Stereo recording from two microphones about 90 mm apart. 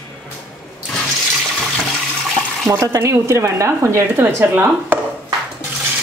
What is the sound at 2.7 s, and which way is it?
A woman's voice, 35° right (ahead or behind).